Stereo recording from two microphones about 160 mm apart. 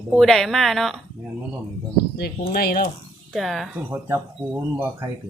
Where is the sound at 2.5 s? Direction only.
70° left (ahead or behind).